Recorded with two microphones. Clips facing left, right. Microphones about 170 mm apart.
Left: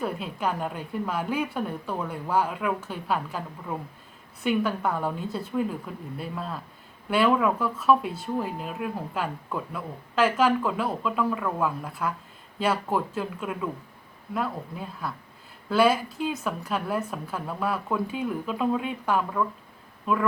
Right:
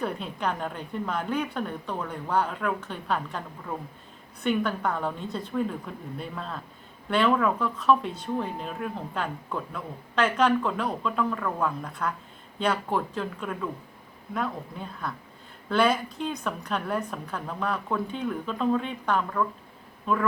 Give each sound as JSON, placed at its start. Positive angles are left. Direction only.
{"t": 0.0, "sound": "speech", "side_deg": 5}